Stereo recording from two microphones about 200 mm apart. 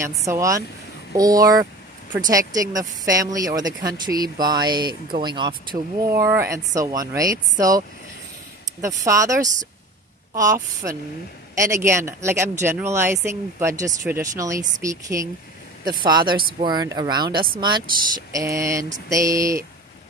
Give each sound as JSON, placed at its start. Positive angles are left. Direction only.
{"t": 0.2, "sound": "speech", "side_deg": -15}
{"t": 8.8, "sound": "speech", "side_deg": -15}